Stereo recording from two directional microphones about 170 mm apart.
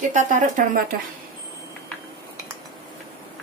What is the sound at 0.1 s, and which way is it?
Speech, 45° right (ahead or behind).